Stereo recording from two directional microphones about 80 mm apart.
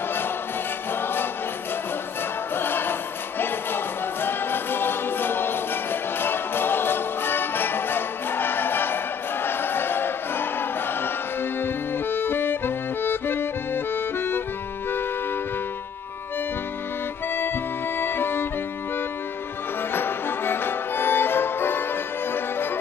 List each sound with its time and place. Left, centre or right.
2.5 s music: left
13.9 s accordion: left
17.9 s music: left
19.9 s music: left